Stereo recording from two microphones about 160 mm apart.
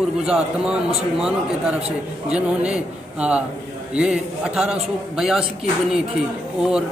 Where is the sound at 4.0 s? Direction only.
5° right (ahead or behind).